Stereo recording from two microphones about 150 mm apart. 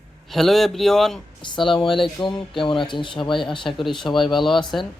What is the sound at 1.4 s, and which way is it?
Speech, 30° left (ahead or behind).